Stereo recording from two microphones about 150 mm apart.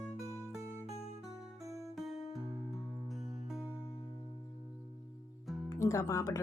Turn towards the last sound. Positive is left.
turn(degrees=25)  # may be behind; listen again after turning